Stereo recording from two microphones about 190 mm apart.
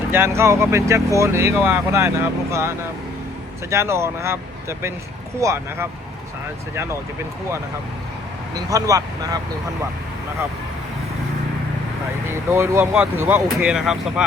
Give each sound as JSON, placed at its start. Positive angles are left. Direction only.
{"t": 0.1, "sound": "speech", "side_deg": -15}
{"t": 5.4, "sound": "speech", "side_deg": -15}
{"t": 8.5, "sound": "speech", "side_deg": -20}
{"t": 12.5, "sound": "speech", "side_deg": -15}